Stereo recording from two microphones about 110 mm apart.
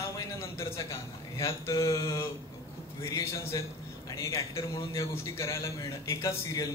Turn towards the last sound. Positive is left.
turn(degrees=30)  # may be behind; listen again after turning